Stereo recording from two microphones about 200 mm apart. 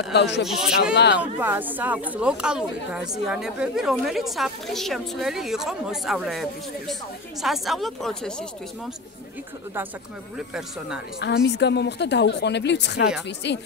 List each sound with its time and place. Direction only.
0.1 s a woman's voice: 60° left (ahead or behind)
0.5 s speech: 5° right (ahead or behind)
0.9 s a woman's voice: 60° left (ahead or behind)
1.4 s speech: 10° right (ahead or behind)
11.1 s a woman's voice: 60° left (ahead or behind)